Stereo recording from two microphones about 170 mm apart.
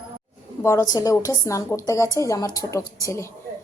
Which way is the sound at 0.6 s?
20° left (ahead or behind).